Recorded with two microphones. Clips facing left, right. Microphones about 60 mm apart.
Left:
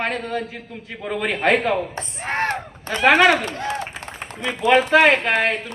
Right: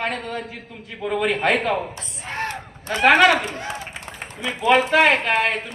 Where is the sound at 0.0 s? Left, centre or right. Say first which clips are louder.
Left 2 dB; centre.